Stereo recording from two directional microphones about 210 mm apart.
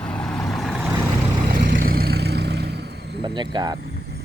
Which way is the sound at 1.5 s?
45° right (ahead or behind).